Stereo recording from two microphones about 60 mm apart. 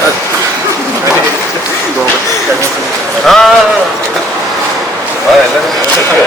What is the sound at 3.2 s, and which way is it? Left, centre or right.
Speech, centre.